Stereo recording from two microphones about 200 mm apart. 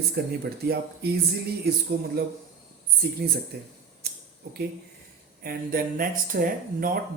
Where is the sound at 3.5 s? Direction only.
55° right (ahead or behind).